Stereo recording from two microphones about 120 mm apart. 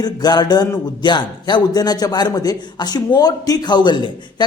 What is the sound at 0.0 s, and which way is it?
A man's voice, 35° left (ahead or behind).